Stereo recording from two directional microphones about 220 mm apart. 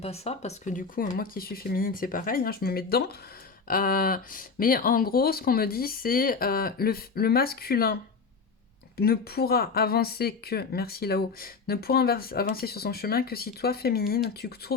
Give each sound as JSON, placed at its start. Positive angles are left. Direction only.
{"t": 0.0, "sound": "speech", "side_deg": 30}
{"t": 9.0, "sound": "speech", "side_deg": 45}